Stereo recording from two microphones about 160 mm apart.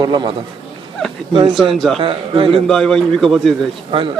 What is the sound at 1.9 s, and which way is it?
Speech, 35° right (ahead or behind).